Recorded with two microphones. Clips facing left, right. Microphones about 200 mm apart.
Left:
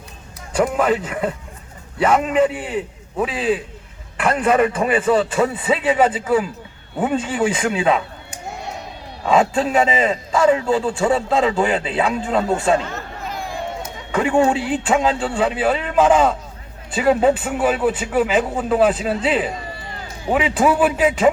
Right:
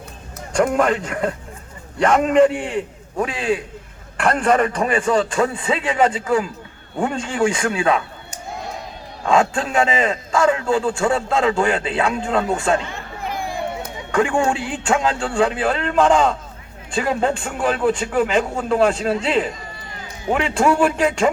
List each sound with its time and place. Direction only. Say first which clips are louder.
0.5 s a man's voice: even; 5° left (ahead or behind)
7.5 s speech: left 1 dB; 20° left (ahead or behind)
9.2 s a man's voice: left 1 dB; 5° left (ahead or behind)
14.1 s a man's voice: left 2 dB; 5° left (ahead or behind)